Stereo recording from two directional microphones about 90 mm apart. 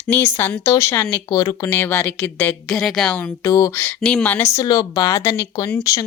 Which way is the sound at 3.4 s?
35° left (ahead or behind).